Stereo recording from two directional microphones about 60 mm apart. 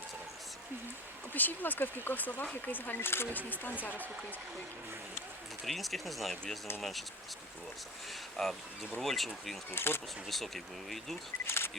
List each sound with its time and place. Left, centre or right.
1.3 s speech: left
3.3 s speech: left
5.6 s speech: centre
8.4 s speech: centre
9.7 s speech: left
10.2 s speech: centre
11.4 s speech: left